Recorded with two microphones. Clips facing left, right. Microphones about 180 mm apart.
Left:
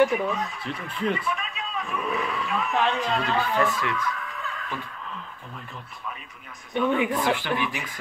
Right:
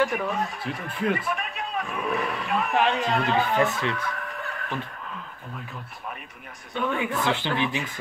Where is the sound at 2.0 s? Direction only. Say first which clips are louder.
Right 1 dB; 60° right (ahead or behind).